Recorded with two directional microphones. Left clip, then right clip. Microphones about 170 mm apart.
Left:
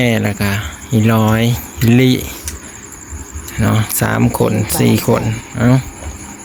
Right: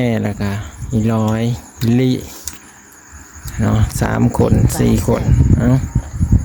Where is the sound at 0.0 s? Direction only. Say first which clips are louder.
Left 4 dB; 20° right (ahead or behind).